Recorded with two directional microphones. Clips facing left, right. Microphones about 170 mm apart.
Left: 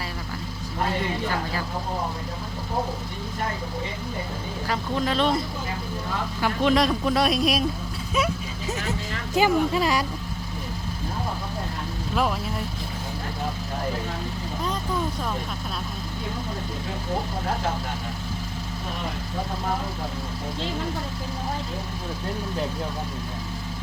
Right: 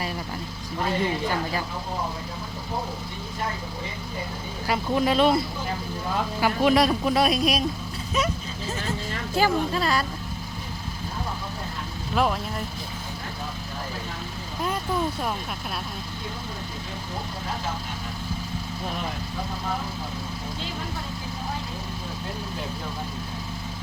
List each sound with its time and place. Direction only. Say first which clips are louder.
4.7 s speech: right 3 dB; 10° right (ahead or behind)
6.4 s speech: right 1 dB; 5° right (ahead or behind)
8.6 s speech: left 1 dB; 20° left (ahead or behind)
12.1 s speech: right 1 dB; centre (ahead or behind)